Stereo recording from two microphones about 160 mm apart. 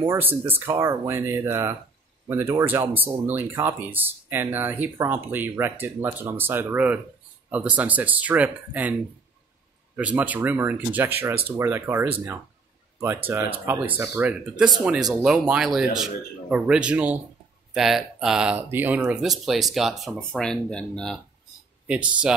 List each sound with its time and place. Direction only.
0.1 s speech: 15° right (ahead or behind)
9.9 s speech: 10° right (ahead or behind)
13.9 s speech: 10° right (ahead or behind); by 21.2 s 5° left (ahead or behind)
21.8 s speech: 5° right (ahead or behind)